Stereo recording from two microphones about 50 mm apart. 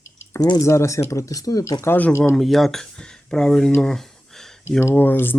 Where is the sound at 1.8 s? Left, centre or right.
Left.